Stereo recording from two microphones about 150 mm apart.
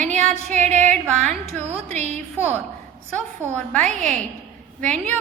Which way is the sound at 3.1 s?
10° left (ahead or behind).